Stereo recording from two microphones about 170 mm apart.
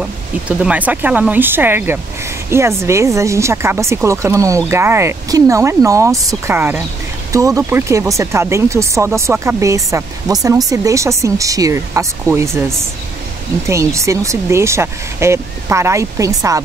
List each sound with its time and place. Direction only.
0.5 s speech: 10° right (ahead or behind)